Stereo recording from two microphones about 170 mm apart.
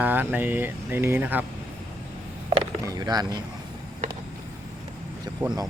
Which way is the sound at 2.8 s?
20° right (ahead or behind).